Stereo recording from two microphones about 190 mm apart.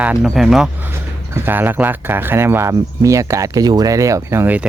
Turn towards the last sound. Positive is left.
turn(degrees=-10)  # may be behind; listen again after turning